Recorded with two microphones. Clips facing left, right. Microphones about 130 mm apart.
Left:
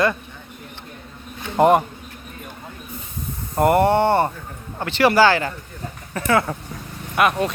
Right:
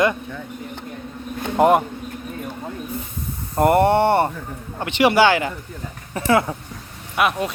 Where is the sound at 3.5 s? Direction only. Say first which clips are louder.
Right 1 dB; 20° left (ahead or behind).